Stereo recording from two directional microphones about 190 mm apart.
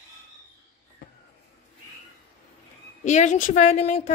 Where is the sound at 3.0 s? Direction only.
40° left (ahead or behind).